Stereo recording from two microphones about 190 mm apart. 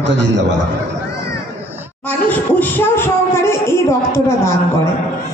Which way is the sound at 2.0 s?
10° left (ahead or behind).